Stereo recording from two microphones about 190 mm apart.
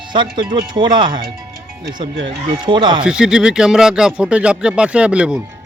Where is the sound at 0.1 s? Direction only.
25° right (ahead or behind).